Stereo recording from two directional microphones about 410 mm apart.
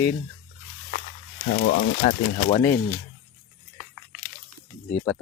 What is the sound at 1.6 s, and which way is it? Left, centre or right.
Speech, centre.